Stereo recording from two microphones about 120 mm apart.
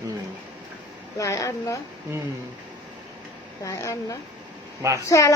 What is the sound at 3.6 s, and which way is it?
A woman's voice, 25° left (ahead or behind).